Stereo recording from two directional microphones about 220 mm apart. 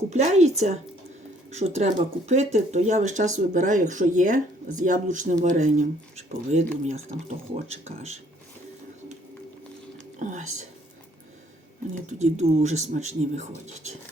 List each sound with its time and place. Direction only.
0.1 s speech: 30° right (ahead or behind)
10.2 s speech: 35° right (ahead or behind)
12.0 s speech: 30° right (ahead or behind)